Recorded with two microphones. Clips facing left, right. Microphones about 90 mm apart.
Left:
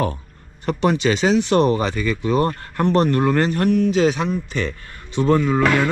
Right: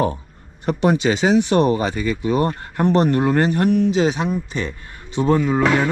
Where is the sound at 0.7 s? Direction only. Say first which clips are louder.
Right 1 dB; 20° right (ahead or behind).